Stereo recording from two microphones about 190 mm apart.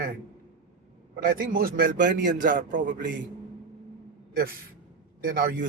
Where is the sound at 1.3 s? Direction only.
50° right (ahead or behind).